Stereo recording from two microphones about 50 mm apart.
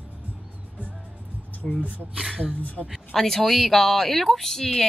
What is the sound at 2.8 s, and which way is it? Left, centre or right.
Speech, centre.